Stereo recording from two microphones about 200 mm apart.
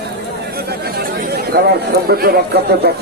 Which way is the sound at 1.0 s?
50° right (ahead or behind).